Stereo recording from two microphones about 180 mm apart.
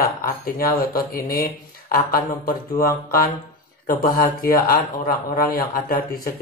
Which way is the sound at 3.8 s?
50° left (ahead or behind).